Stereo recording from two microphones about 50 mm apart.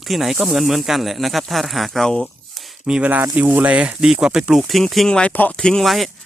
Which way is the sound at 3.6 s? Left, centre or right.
Right.